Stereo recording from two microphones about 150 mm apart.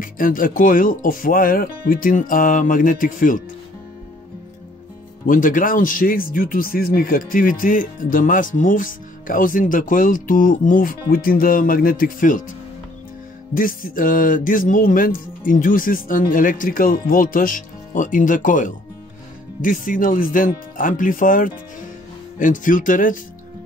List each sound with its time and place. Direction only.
0.0 s speech: 65° left (ahead or behind)
5.2 s speech: 65° left (ahead or behind)
13.6 s speech: 65° left (ahead or behind)